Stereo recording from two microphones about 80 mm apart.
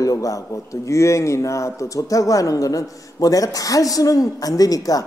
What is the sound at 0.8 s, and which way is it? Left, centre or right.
Speech, left.